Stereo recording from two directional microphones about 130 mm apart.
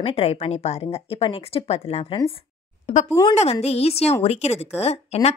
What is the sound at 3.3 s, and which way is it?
A woman's voice, 55° left (ahead or behind).